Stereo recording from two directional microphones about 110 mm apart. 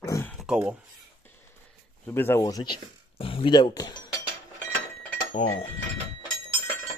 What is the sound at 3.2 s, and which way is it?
Speech, 55° left (ahead or behind).